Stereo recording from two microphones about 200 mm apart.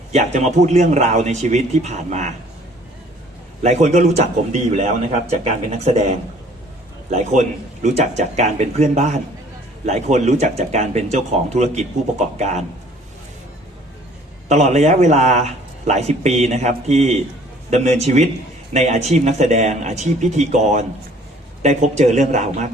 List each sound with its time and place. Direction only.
0.1 s a man's voice: 35° right (ahead or behind)
3.6 s a man's voice: 35° right (ahead or behind)
14.4 s a man's voice: 35° right (ahead or behind)